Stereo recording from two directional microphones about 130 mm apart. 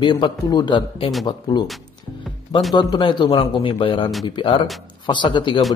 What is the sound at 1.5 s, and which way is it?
Speech, 30° left (ahead or behind).